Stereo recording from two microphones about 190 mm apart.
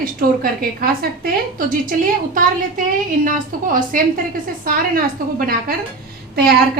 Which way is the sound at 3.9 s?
45° right (ahead or behind).